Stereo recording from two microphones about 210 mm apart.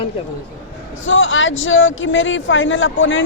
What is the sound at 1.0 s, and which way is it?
Speech, 65° left (ahead or behind).